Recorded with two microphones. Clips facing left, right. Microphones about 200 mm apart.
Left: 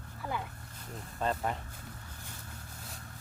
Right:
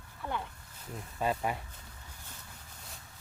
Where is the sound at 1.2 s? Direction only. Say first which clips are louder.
Right 1 dB; 10° right (ahead or behind).